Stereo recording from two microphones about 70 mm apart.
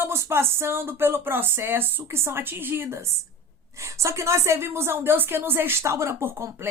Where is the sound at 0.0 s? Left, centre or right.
Right.